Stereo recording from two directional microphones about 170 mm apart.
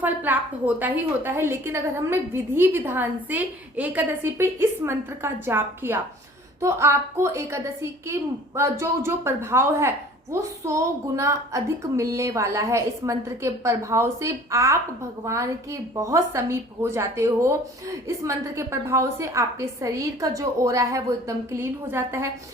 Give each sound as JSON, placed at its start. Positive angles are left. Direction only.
{"t": 0.0, "sound": "a woman's voice", "side_deg": -10}